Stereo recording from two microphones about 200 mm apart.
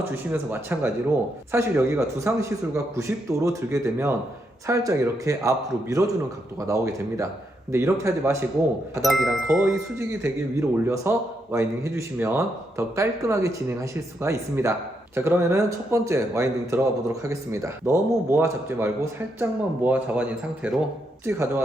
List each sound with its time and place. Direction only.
0.0 s a man's voice: 10° right (ahead or behind)
9.0 s speech: centre (ahead or behind)
9.6 s a man's voice: 15° right (ahead or behind)